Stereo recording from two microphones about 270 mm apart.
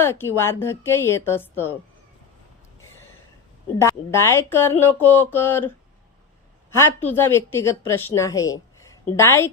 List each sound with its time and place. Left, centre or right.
0.0 s speech: centre
3.8 s a woman's voice: centre